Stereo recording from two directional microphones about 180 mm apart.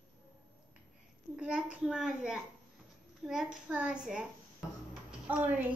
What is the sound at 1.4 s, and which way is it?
A child's voice, 5° right (ahead or behind).